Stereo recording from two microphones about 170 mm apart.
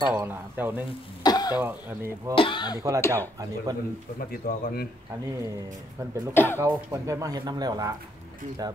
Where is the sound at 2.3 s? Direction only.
30° left (ahead or behind).